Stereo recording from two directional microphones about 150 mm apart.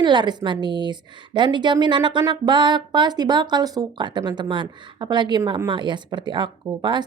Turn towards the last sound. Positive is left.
turn(degrees=-30)  # may be behind; listen again after turning